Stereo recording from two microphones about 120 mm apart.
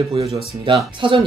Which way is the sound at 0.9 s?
45° right (ahead or behind).